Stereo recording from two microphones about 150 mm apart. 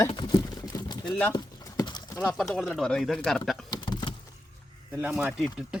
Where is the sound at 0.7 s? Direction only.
25° left (ahead or behind).